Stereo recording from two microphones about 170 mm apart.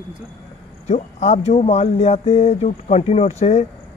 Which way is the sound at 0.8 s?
40° left (ahead or behind).